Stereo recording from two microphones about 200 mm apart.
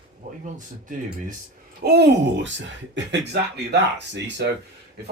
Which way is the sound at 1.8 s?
55° right (ahead or behind).